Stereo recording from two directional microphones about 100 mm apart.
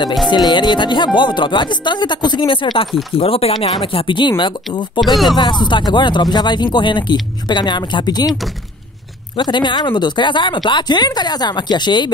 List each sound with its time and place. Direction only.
0.3 s speech: 45° left (ahead or behind)
3.2 s speech: 75° left (ahead or behind)
3.8 s speech: 60° left (ahead or behind)
5.0 s speech: centre (ahead or behind)
5.3 s speech: 45° left (ahead or behind)
9.4 s speech: 50° left (ahead or behind)